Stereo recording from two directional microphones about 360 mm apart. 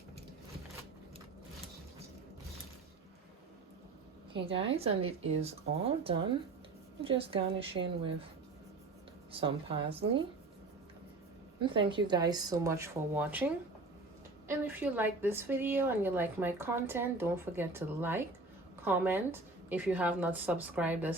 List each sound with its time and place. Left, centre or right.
4.4 s a woman's voice: centre
7.0 s a woman's voice: centre
9.3 s a woman's voice: centre
11.7 s a woman's voice: centre